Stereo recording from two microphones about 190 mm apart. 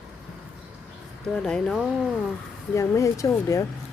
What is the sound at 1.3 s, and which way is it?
Speech, 5° left (ahead or behind).